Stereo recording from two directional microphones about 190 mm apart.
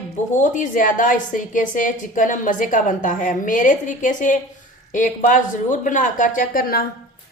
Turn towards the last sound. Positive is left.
turn(degrees=50)  # may be behind; listen again after turning